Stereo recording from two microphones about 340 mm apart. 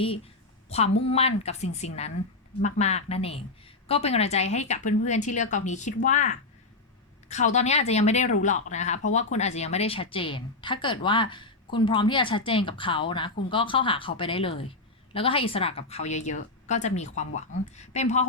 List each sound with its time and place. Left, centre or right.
0.7 s a woman's voice: centre